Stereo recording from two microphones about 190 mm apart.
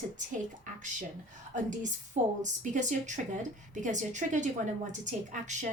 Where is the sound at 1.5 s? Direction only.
40° right (ahead or behind).